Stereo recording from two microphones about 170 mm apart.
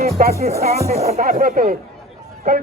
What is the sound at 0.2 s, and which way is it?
A man's voice, 60° right (ahead or behind).